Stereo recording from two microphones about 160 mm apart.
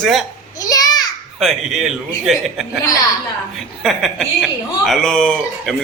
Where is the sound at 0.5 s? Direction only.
25° left (ahead or behind).